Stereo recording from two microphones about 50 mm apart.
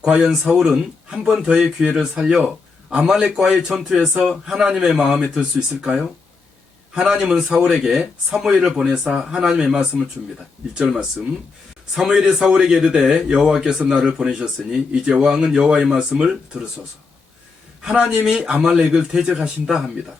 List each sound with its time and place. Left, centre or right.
0.0 s speech: centre
1.1 s a man's voice: centre
11.9 s a man's voice: centre
17.8 s a man's voice: centre